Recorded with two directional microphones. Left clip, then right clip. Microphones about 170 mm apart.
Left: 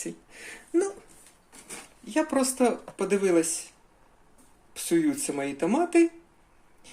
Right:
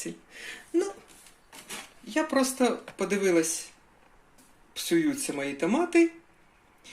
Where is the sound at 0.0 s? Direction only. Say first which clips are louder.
Even; 10° left (ahead or behind).